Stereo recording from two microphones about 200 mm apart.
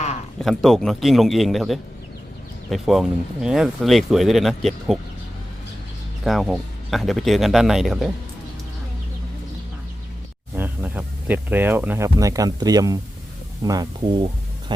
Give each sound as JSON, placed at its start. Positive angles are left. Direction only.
{"t": 0.4, "sound": "speech", "side_deg": 0}
{"t": 6.2, "sound": "speech", "side_deg": 0}
{"t": 10.5, "sound": "speech", "side_deg": -10}